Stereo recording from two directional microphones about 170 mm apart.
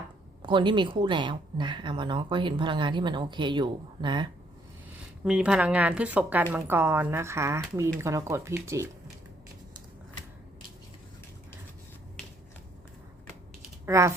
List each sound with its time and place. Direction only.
0.4 s speech: 30° right (ahead or behind)
5.2 s speech: 5° right (ahead or behind)
13.8 s speech: 15° right (ahead or behind)